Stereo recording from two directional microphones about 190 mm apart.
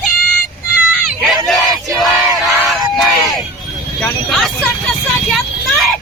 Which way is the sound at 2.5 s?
15° right (ahead or behind).